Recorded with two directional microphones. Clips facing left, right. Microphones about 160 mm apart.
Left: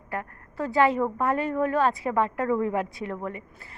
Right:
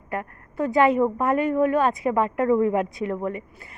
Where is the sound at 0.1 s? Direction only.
20° right (ahead or behind).